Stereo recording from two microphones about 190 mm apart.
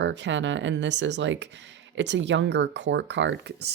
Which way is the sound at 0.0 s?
70° right (ahead or behind).